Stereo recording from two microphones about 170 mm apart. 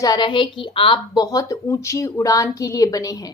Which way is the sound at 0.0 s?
25° left (ahead or behind).